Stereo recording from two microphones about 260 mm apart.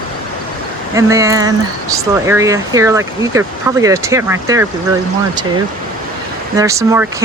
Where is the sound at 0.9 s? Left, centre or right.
Centre.